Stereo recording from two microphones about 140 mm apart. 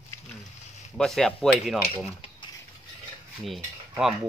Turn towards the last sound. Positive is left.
turn(degrees=0)  # may be behind; listen again after turning